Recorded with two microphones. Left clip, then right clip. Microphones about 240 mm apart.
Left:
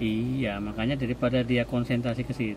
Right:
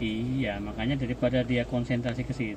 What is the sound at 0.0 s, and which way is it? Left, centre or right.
A man's voice, left.